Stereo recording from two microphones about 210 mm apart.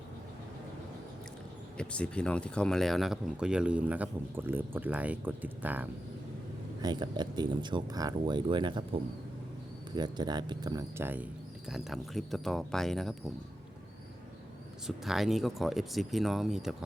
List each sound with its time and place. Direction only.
1.8 s speech: 5° left (ahead or behind)
6.8 s speech: 20° right (ahead or behind); by 13.1 s centre (ahead or behind)
14.8 s speech: centre (ahead or behind)